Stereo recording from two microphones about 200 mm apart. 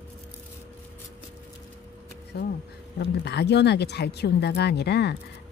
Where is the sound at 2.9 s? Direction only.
55° left (ahead or behind).